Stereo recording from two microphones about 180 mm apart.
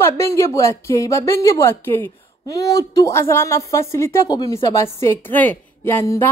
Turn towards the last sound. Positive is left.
turn(degrees=15)  # may be behind; listen again after turning